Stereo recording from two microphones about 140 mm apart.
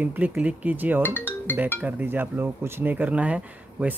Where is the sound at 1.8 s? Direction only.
15° right (ahead or behind).